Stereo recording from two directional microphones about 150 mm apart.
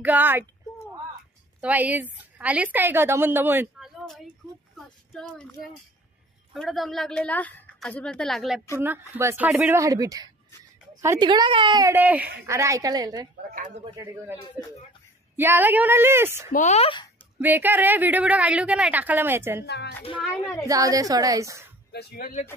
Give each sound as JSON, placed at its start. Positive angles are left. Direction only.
{"t": 0.0, "sound": "a woman's voice", "side_deg": -10}
{"t": 1.6, "sound": "a woman's voice", "side_deg": -10}
{"t": 3.8, "sound": "a sound", "side_deg": 0}
{"t": 6.5, "sound": "a woman's voice", "side_deg": 0}
{"t": 8.8, "sound": "a woman's voice", "side_deg": -15}
{"t": 11.2, "sound": "a woman's voice", "side_deg": -30}
{"t": 11.9, "sound": "a woman's voice", "side_deg": -10}
{"t": 15.3, "sound": "a woman's voice", "side_deg": -15}
{"t": 16.5, "sound": "speech", "side_deg": 50}
{"t": 17.4, "sound": "a woman's voice", "side_deg": -10}
{"t": 19.6, "sound": "speech", "side_deg": 90}
{"t": 20.6, "sound": "a woman's voice", "side_deg": -25}
{"t": 21.9, "sound": "speech", "side_deg": 75}